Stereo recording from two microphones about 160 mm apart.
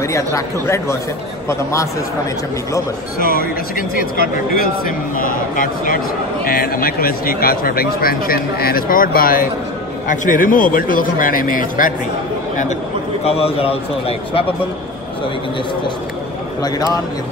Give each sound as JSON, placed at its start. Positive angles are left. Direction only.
{"t": 0.0, "sound": "speech", "side_deg": 20}
{"t": 3.3, "sound": "speech", "side_deg": 65}
{"t": 13.2, "sound": "a man's voice", "side_deg": 40}
{"t": 16.6, "sound": "speech", "side_deg": 25}